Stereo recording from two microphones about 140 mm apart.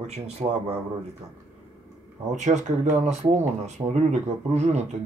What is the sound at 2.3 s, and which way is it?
Speech, 55° right (ahead or behind).